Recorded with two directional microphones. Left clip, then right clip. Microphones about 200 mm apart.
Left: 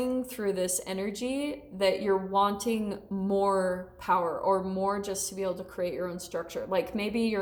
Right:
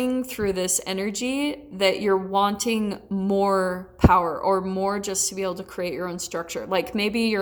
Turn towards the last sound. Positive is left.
turn(degrees=-35)  # may be behind; listen again after turning